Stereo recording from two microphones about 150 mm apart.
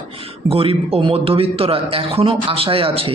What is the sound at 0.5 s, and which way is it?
A man's voice, 40° right (ahead or behind).